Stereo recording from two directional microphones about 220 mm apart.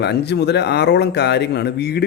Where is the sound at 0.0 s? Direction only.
50° left (ahead or behind).